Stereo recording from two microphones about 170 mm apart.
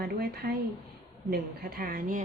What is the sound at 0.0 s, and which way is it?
A woman's voice, 70° right (ahead or behind).